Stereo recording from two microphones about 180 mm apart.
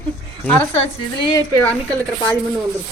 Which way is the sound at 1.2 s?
25° left (ahead or behind).